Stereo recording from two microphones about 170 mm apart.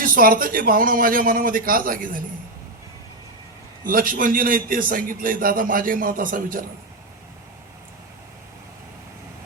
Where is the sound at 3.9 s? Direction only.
55° right (ahead or behind).